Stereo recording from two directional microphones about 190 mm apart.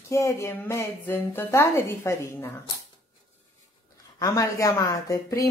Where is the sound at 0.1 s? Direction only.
15° left (ahead or behind).